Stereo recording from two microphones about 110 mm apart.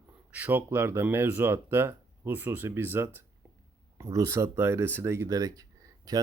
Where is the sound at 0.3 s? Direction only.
15° right (ahead or behind).